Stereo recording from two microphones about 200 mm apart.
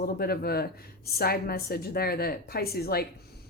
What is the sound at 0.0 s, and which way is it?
A woman's voice, 50° left (ahead or behind).